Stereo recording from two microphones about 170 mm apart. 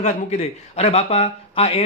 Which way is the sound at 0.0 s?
40° left (ahead or behind).